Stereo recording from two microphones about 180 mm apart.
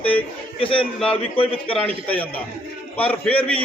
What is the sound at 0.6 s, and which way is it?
Speech, 30° left (ahead or behind).